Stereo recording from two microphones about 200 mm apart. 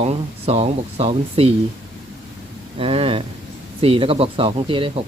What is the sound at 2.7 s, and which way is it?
Speech, 25° right (ahead or behind).